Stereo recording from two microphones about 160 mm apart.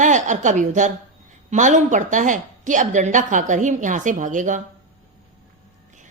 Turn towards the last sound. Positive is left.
turn(degrees=-50)  # may be behind; listen again after turning